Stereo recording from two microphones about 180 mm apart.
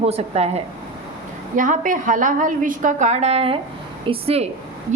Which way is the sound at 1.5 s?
45° right (ahead or behind).